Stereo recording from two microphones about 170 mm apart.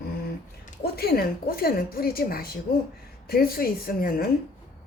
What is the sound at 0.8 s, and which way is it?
Speech, 65° left (ahead or behind).